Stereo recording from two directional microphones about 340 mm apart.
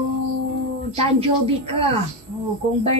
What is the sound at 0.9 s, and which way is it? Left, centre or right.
Speech, centre.